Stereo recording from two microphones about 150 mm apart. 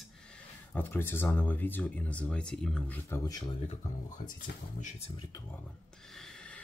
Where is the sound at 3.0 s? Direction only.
20° left (ahead or behind).